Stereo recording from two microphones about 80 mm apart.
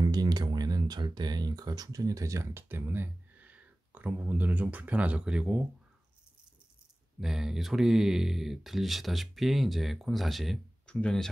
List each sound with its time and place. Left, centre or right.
0.0 s speech: right; by 5.6 s centre
7.2 s speech: centre
10.9 s speech: centre